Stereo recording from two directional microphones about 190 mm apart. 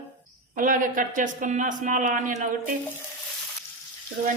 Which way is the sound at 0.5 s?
45° right (ahead or behind).